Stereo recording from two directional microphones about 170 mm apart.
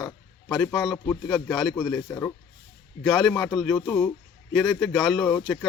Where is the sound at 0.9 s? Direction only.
10° left (ahead or behind).